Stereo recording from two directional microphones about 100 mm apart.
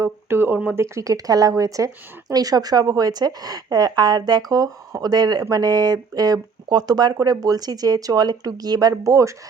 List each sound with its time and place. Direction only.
0.3 s a woman's voice: 20° right (ahead or behind)